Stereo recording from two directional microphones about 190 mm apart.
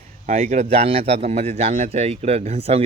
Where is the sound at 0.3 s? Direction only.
35° right (ahead or behind).